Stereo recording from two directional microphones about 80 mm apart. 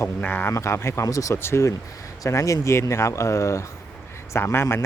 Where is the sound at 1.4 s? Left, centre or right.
Left.